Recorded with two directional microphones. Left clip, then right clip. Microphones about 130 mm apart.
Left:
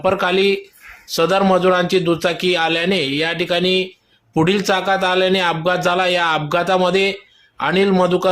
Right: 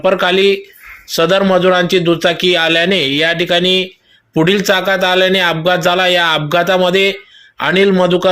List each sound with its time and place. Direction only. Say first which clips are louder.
0.0 s a man's voice: right 5 dB; 20° right (ahead or behind)